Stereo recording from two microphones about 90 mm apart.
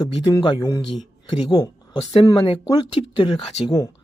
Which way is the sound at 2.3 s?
90° left.